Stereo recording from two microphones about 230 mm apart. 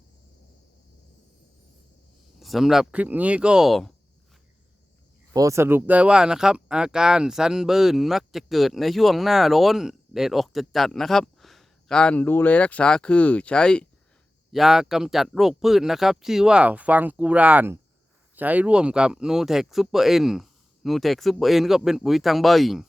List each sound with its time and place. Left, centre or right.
2.4 s speech: centre
5.3 s speech: centre